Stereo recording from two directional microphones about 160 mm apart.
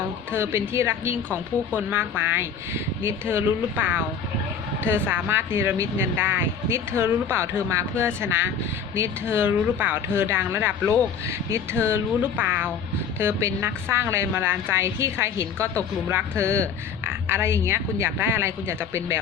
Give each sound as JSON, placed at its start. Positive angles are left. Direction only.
{"t": 0.3, "sound": "speech", "side_deg": -15}